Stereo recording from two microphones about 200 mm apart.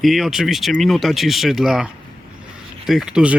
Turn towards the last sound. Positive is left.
turn(degrees=-5)  # may be behind; listen again after turning